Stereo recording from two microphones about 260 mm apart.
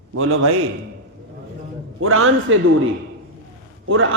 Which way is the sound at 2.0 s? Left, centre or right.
Right.